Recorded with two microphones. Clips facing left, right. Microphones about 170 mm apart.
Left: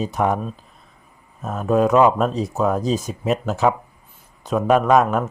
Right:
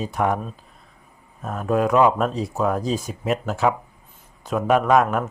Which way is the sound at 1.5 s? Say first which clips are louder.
Left 3 dB; 20° left (ahead or behind).